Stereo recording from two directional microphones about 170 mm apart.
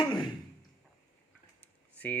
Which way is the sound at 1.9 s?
10° left (ahead or behind).